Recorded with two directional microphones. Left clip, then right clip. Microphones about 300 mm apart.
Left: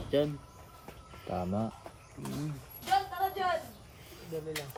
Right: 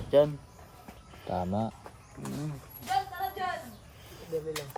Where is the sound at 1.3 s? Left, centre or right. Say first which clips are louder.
Right 3 dB; right.